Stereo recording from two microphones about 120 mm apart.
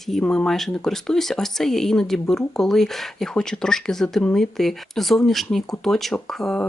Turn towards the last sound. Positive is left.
turn(degrees=5)  # may be behind; listen again after turning